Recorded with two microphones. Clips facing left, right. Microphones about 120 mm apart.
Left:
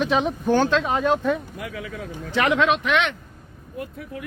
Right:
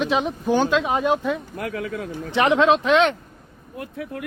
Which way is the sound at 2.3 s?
25° right (ahead or behind).